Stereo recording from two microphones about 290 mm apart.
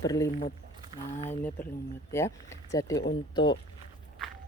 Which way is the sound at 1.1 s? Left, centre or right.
Left.